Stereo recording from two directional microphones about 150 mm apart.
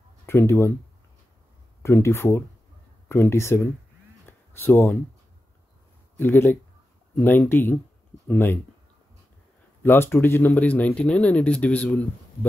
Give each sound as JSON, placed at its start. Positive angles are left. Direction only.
{"t": 0.3, "sound": "speech", "side_deg": 15}
{"t": 1.8, "sound": "speech", "side_deg": 15}
{"t": 4.3, "sound": "a sound", "side_deg": 15}
{"t": 6.1, "sound": "speech", "side_deg": 15}
{"t": 9.8, "sound": "speech", "side_deg": 15}